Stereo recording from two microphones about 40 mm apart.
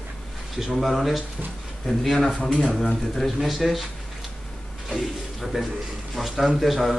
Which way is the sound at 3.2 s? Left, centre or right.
Centre.